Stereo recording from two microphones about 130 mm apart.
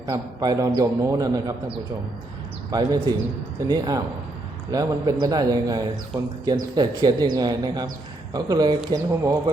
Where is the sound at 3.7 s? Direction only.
30° right (ahead or behind).